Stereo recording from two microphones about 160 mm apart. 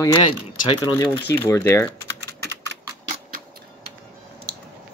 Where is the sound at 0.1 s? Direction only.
30° left (ahead or behind).